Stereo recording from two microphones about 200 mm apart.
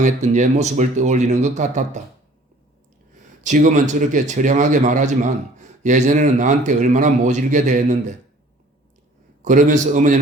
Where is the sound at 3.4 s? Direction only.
40° right (ahead or behind).